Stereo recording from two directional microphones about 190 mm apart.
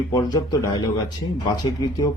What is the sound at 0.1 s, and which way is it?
Speech, 20° left (ahead or behind).